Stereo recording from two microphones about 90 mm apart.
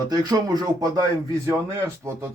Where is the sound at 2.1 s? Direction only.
30° right (ahead or behind).